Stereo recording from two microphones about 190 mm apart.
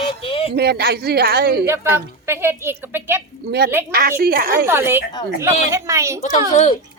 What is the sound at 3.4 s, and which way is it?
A woman's voice, 60° right (ahead or behind).